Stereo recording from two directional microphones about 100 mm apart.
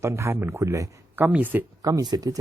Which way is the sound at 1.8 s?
40° right (ahead or behind).